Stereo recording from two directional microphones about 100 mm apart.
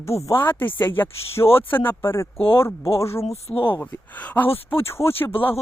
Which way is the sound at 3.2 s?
80° left.